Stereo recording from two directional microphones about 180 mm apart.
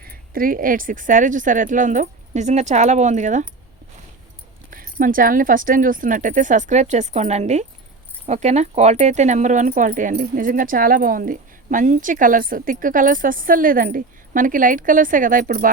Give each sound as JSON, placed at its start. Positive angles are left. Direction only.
{"t": 0.0, "sound": "speech", "side_deg": -55}
{"t": 4.7, "sound": "speech", "side_deg": -50}